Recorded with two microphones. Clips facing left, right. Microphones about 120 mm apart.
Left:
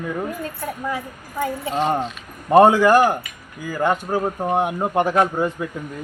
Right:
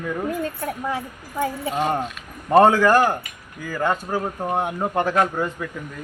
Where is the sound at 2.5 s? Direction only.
15° left (ahead or behind).